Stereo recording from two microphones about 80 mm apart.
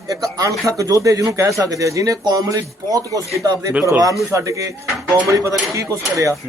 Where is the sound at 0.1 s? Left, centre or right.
Right.